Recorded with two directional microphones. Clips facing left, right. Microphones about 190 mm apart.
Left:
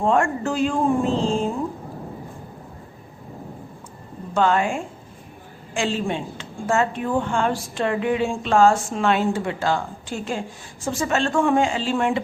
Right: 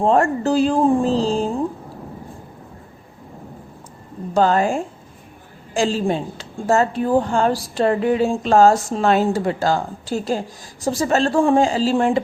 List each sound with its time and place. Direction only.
0.0 s a woman's voice: 35° right (ahead or behind)
4.4 s a woman's voice: 40° right (ahead or behind)